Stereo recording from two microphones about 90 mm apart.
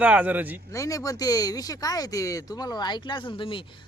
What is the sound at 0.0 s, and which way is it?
Speech, 15° right (ahead or behind).